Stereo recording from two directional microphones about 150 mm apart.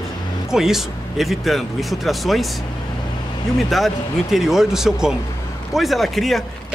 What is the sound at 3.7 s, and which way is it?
Speech, centre (ahead or behind).